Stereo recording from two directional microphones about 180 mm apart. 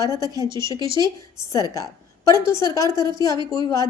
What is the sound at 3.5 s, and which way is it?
Speech, 20° left (ahead or behind).